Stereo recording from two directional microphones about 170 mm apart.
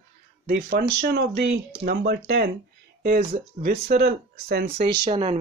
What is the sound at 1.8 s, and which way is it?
Speech, 65° right (ahead or behind).